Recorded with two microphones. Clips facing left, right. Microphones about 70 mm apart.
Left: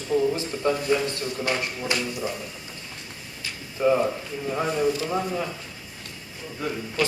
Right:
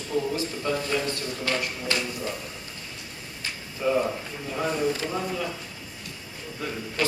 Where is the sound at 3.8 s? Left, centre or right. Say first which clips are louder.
Left 5 dB; left.